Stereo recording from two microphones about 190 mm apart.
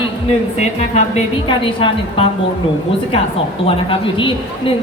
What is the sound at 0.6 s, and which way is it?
A woman's voice, 35° left (ahead or behind).